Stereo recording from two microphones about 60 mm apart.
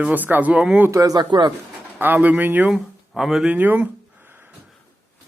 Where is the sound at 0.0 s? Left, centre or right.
Right.